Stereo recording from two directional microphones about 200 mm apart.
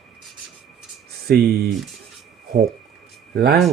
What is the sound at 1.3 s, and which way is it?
Speech, 55° right (ahead or behind).